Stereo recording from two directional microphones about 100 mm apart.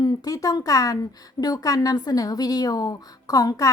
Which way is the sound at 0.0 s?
40° left (ahead or behind).